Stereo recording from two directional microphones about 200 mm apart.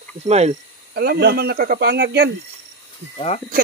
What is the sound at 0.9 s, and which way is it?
Speech, 50° right (ahead or behind).